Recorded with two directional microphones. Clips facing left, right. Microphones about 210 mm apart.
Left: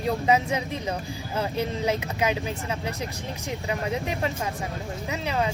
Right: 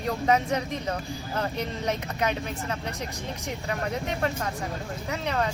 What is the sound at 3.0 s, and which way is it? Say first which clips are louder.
Speech: left 1 dB; 35° right (ahead or behind).